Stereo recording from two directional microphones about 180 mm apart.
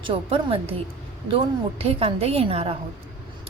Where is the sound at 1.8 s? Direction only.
35° right (ahead or behind).